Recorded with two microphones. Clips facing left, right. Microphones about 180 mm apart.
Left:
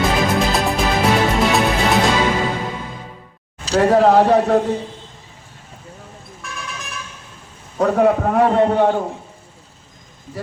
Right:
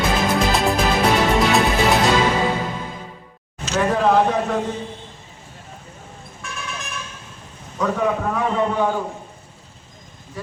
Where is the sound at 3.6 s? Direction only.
35° left (ahead or behind).